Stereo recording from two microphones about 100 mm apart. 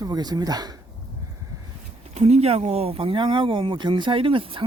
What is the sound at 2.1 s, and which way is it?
Speech, 90° right.